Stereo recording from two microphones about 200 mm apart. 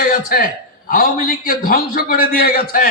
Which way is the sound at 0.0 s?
45° left (ahead or behind).